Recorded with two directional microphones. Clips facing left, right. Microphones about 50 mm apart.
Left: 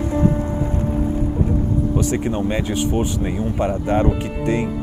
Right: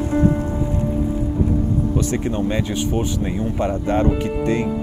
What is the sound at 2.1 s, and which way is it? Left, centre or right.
Speech, centre.